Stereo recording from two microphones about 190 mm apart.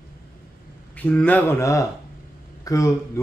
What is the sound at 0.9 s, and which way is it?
Speech, 5° left (ahead or behind).